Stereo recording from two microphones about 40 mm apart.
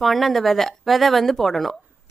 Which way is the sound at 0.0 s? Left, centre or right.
Centre.